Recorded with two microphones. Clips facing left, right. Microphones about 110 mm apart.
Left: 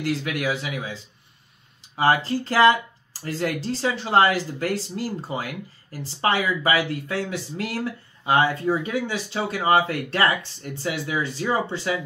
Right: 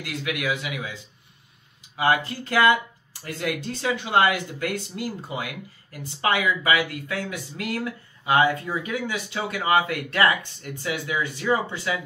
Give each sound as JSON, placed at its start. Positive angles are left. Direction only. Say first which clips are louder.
{"t": 0.0, "sound": "speech", "louder": "left 4 dB", "side_deg": 35}
{"t": 2.0, "sound": "speech", "louder": "left 2 dB", "side_deg": 35}